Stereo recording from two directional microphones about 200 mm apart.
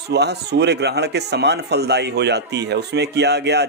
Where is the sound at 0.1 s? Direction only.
55° right (ahead or behind).